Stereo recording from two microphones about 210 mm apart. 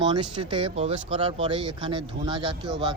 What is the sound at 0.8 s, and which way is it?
Speech, 30° right (ahead or behind).